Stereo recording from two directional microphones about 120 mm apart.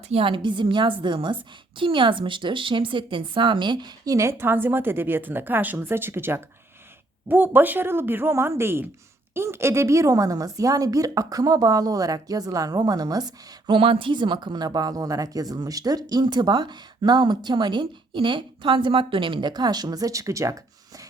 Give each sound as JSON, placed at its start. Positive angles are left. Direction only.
{"t": 0.1, "sound": "a woman's voice", "side_deg": -50}
{"t": 13.7, "sound": "speech", "side_deg": -50}